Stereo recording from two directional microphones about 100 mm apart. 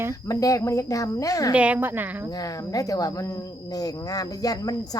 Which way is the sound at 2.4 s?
35° left (ahead or behind).